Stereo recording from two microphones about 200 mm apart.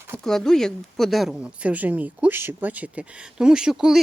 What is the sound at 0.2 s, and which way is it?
Speech, 5° left (ahead or behind).